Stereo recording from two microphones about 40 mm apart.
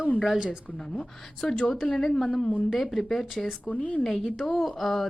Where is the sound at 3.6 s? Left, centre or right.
Left.